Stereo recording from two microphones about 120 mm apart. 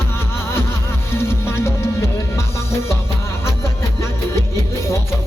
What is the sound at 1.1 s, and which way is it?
Music, 20° left (ahead or behind).